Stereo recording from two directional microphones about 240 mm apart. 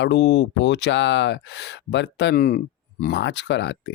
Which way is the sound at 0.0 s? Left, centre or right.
Left.